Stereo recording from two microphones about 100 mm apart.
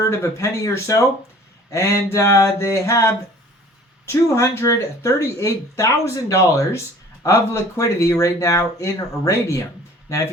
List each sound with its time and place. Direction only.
0.0 s speech: 30° left (ahead or behind)